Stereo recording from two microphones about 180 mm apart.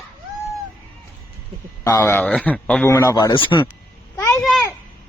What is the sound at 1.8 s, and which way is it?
Speech, 15° left (ahead or behind).